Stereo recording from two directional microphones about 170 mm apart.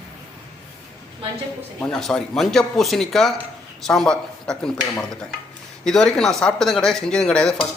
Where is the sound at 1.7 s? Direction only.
5° left (ahead or behind).